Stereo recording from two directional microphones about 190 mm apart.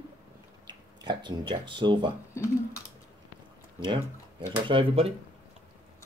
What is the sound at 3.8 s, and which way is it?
Speech, 25° right (ahead or behind).